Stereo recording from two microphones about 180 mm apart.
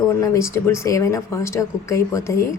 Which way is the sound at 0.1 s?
15° left (ahead or behind).